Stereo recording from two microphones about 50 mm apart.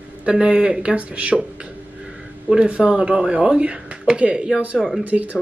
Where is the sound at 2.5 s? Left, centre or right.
Right.